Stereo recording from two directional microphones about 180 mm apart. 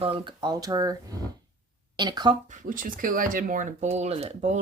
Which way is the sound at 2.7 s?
50° right (ahead or behind).